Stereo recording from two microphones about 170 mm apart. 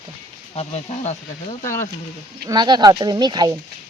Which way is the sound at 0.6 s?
40° left (ahead or behind).